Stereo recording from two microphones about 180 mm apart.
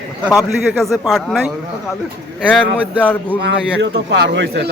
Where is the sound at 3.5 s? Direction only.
75° right (ahead or behind).